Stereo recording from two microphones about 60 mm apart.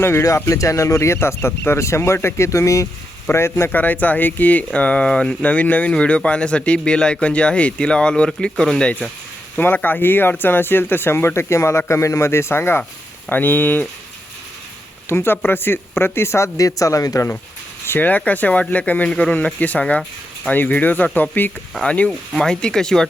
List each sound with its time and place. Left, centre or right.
0.3 s speech: left
3.3 s speech: left
3.7 s speech: left; by 9.0 s centre
9.6 s speech: left
15.1 s speech: left
17.8 s speech: left
18.1 s speech: left
21.8 s speech: left